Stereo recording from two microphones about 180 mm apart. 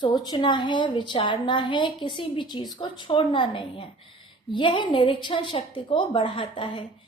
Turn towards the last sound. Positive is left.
turn(degrees=30)  # may be behind; listen again after turning